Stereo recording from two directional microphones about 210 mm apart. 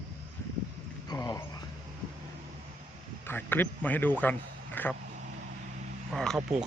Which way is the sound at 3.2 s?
10° left (ahead or behind).